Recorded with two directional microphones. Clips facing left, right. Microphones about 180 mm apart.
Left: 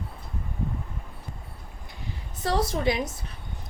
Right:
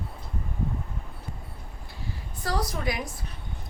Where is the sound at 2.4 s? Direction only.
25° left (ahead or behind).